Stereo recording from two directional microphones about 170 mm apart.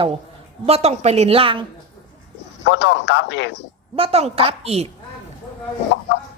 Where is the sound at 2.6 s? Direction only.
90° left.